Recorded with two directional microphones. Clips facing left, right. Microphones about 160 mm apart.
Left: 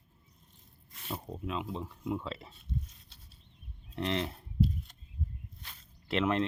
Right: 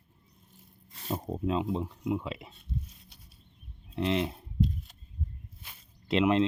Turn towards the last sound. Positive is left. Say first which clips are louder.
# right 5 dB
turn(degrees=-15)  # may be behind; listen again after turning